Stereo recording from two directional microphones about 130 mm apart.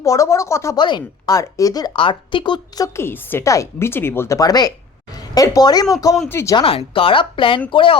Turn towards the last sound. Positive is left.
turn(degrees=40)  # may be behind; listen again after turning